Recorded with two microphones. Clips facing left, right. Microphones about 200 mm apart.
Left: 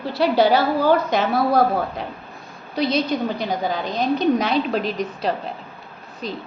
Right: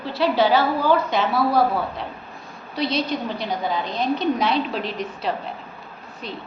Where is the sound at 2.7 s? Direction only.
45° left (ahead or behind).